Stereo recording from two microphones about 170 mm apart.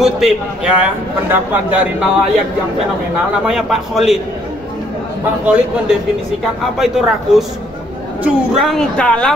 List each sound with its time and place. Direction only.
0.0 s a woman's voice: 5° right (ahead or behind)
3.4 s a woman's voice: centre (ahead or behind)
5.4 s a man's voice: 10° right (ahead or behind)